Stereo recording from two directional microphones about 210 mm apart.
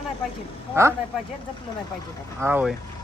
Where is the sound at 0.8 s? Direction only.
15° right (ahead or behind).